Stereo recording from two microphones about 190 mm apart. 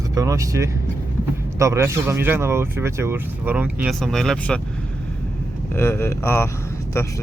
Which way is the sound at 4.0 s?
Centre (ahead or behind).